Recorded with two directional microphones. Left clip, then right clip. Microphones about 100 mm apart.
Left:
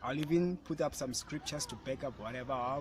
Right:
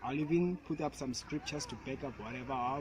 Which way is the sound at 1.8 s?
40° left (ahead or behind).